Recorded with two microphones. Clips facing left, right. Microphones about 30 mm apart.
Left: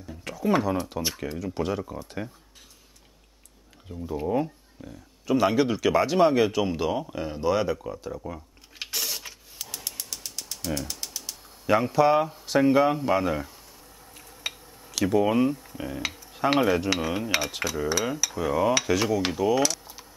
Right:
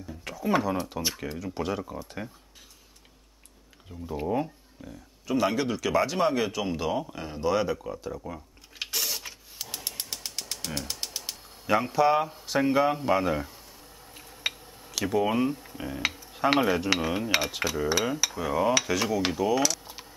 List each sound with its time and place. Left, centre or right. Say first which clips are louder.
0.2 s speech: left 2 dB; centre
3.9 s speech: left 2 dB; centre
9.9 s a sound: right 1 dB; right
11.6 s speech: left 2 dB; centre
14.0 s a sound: right 3 dB; centre
15.0 s speech: left 3 dB; centre
17.6 s cutlery: even; centre
18.3 s speech: left 3 dB; centre
19.8 s a sound: right 2 dB; right